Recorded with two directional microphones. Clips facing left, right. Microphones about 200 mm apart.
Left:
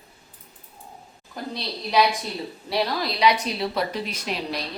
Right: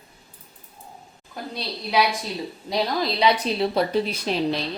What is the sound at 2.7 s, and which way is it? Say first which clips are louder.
A woman's voice: right 1 dB; 25° right (ahead or behind).